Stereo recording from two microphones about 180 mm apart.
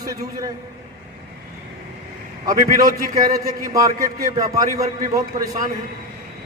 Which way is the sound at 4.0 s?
50° right (ahead or behind).